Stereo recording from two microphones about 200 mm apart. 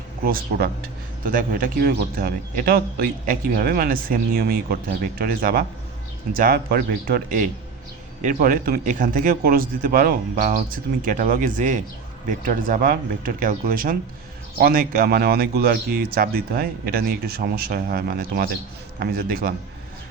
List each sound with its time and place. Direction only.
0.3 s a man's voice: 45° right (ahead or behind)